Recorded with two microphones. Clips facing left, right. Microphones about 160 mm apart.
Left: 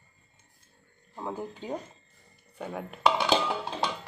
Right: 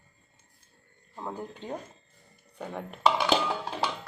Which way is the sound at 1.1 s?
5° left (ahead or behind).